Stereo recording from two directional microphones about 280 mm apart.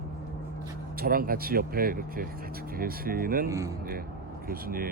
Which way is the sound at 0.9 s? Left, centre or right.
Right.